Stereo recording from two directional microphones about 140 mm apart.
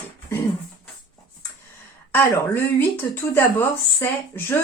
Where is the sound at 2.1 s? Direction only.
15° left (ahead or behind).